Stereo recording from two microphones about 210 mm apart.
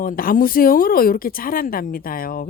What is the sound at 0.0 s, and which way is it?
Speech, 40° left (ahead or behind).